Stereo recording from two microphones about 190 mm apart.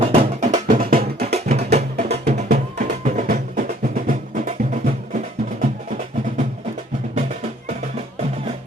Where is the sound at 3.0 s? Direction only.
40° right (ahead or behind).